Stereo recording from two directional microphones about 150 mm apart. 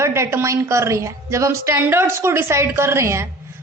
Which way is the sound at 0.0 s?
15° right (ahead or behind).